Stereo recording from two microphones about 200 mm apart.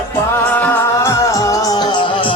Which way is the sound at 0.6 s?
15° left (ahead or behind).